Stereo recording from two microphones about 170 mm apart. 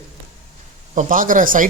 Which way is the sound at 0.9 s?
50° right (ahead or behind).